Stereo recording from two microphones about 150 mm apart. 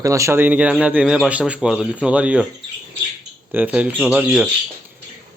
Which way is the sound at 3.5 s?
10° right (ahead or behind).